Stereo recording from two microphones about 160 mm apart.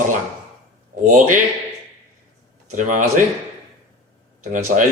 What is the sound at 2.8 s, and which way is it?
Speech, 55° right (ahead or behind).